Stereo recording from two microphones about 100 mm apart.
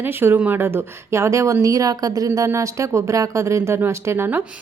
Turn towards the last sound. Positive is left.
turn(degrees=-25)  # may be behind; listen again after turning